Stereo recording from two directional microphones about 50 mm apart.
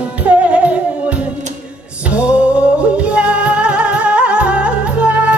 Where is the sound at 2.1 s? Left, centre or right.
Right.